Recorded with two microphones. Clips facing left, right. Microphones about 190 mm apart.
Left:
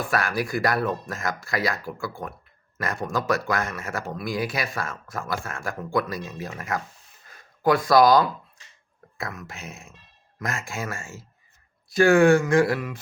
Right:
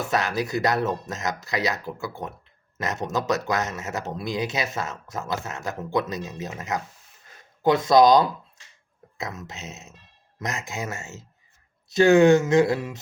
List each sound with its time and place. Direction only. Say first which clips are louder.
0.0 s speech: right 1 dB; 20° right (ahead or behind)